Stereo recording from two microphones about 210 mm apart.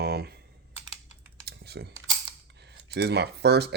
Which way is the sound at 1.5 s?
50° right (ahead or behind).